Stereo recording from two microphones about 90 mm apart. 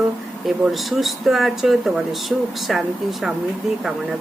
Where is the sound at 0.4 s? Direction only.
Centre (ahead or behind).